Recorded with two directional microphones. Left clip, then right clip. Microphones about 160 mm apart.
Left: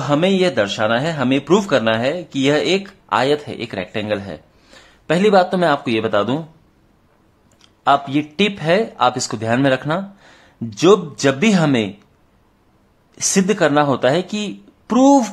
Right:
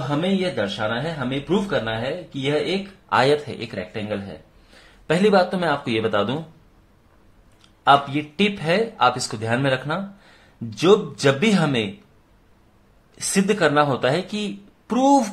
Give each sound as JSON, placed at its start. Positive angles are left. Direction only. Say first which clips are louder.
{"t": 0.1, "sound": "speech", "louder": "left 8 dB", "side_deg": 45}
{"t": 3.1, "sound": "speech", "louder": "left 1 dB", "side_deg": 20}
{"t": 4.8, "sound": "speech", "louder": "left 3 dB", "side_deg": 20}
{"t": 7.8, "sound": "speech", "louder": "left 1 dB", "side_deg": 25}
{"t": 13.1, "sound": "speech", "louder": "left 4 dB", "side_deg": 25}